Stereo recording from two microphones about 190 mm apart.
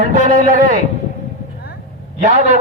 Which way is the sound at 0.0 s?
40° right (ahead or behind).